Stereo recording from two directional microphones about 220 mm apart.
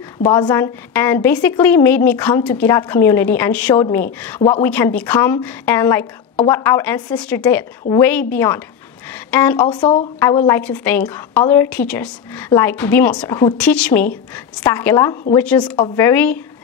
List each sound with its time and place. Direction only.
0.2 s a woman's voice: 20° left (ahead or behind)
9.6 s a woman's voice: 20° left (ahead or behind)